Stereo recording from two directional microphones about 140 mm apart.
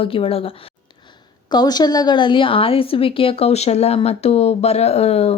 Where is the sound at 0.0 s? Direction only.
40° left (ahead or behind).